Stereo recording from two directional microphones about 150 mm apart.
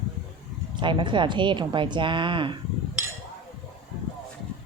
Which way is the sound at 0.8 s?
30° right (ahead or behind).